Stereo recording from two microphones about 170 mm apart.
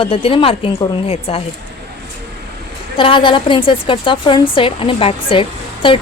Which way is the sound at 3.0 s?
30° left (ahead or behind).